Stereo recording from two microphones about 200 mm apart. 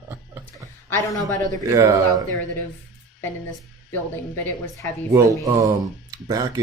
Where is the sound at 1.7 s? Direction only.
15° right (ahead or behind).